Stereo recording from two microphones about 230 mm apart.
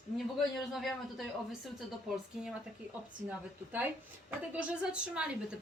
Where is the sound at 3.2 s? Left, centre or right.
Centre.